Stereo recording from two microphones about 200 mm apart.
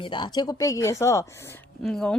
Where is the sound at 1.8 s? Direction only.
Centre (ahead or behind).